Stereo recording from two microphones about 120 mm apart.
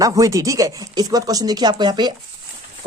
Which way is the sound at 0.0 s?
25° right (ahead or behind).